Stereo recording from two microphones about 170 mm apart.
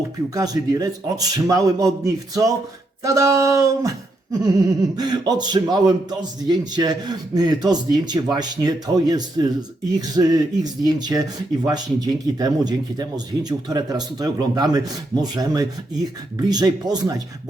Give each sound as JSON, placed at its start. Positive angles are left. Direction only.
{"t": 0.3, "sound": "speech", "side_deg": -20}